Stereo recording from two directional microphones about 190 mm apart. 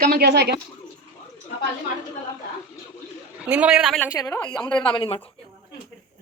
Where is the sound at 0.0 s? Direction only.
55° right (ahead or behind).